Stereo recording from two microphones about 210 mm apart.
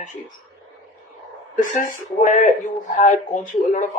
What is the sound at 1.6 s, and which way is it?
Speech, 40° left (ahead or behind).